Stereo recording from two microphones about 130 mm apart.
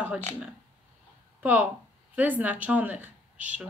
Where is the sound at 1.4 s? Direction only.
10° right (ahead or behind).